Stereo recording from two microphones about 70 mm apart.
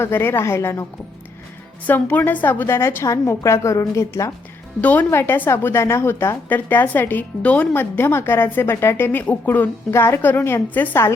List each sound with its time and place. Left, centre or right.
0.0 s a woman's voice: left
1.9 s a woman's voice: left
4.8 s a woman's voice: left
7.7 s a woman's voice: left
9.9 s a woman's voice: left